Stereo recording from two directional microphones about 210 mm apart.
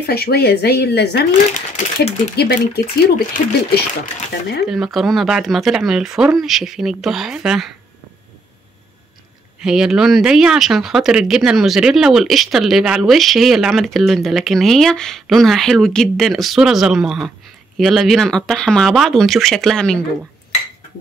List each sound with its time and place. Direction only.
0.0 s speech: 45° left (ahead or behind)
1.5 s speech: 40° left (ahead or behind)
4.6 s speech: centre (ahead or behind)
9.6 s speech: 5° right (ahead or behind)